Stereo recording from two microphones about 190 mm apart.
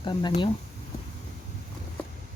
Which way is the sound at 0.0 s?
25° left (ahead or behind).